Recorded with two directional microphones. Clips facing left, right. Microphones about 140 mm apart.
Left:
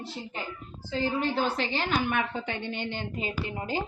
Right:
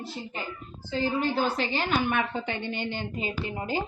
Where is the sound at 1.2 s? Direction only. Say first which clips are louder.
Right 1 dB; 10° right (ahead or behind).